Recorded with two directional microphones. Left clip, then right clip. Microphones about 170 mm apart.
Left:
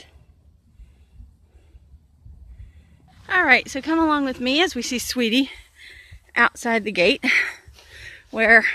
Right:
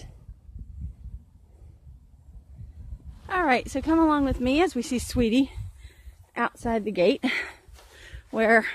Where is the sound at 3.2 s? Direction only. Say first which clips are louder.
Left 7 dB; 5° right (ahead or behind).